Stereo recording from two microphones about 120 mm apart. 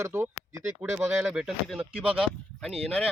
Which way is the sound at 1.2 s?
5° right (ahead or behind).